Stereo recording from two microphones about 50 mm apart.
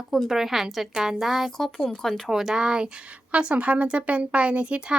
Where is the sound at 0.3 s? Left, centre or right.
Centre.